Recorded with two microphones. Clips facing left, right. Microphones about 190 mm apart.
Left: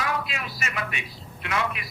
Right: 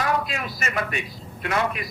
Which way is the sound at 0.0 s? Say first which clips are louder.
Right 4 dB; 45° right (ahead or behind).